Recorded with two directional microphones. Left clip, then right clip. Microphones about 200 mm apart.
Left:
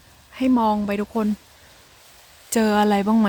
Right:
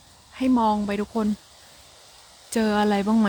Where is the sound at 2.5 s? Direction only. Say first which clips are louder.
Left 3 dB; 15° left (ahead or behind).